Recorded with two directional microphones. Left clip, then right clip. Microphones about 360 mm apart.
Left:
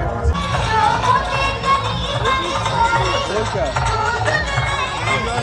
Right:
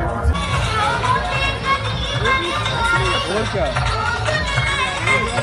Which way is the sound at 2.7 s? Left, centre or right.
Left.